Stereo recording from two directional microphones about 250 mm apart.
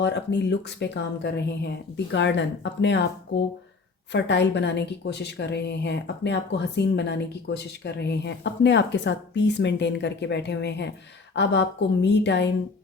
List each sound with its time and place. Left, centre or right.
0.0 s a woman's voice: left